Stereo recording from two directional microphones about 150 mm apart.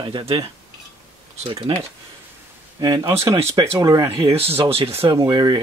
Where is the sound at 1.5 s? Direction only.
40° right (ahead or behind).